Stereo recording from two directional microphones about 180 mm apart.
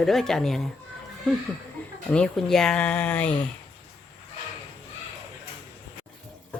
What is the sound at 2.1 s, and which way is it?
A woman's voice, 5° left (ahead or behind).